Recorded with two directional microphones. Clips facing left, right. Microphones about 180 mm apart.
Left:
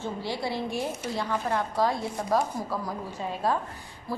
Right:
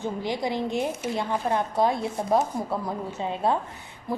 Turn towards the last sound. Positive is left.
turn(degrees=-20)  # may be behind; listen again after turning